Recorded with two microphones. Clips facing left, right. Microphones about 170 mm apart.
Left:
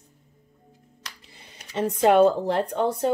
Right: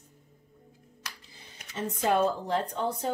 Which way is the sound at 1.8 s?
70° left (ahead or behind).